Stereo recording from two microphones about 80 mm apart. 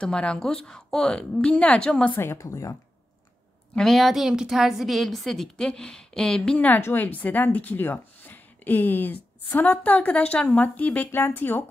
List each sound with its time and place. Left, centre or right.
0.0 s a woman's voice: centre
2.1 s a woman's voice: left
2.4 s speech: left
3.7 s a woman's voice: centre
6.7 s a woman's voice: left